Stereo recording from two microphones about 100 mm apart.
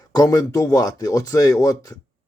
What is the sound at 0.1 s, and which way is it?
Speech, 40° left (ahead or behind).